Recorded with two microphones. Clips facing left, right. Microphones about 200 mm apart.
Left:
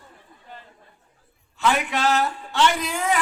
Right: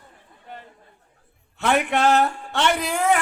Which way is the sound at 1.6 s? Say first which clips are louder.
Right 2 dB; 60° right (ahead or behind).